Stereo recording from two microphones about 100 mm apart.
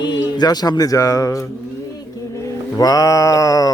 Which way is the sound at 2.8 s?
40° left (ahead or behind).